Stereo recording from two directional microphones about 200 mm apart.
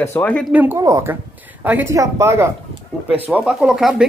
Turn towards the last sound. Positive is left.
turn(degrees=-5)  # may be behind; listen again after turning